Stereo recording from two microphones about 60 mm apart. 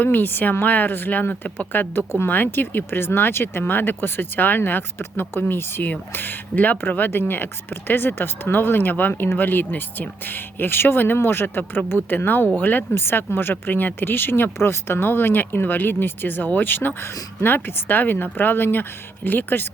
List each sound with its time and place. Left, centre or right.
0.0 s speech: left